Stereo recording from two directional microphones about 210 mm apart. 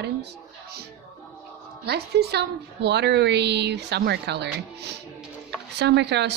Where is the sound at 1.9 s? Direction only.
50° right (ahead or behind).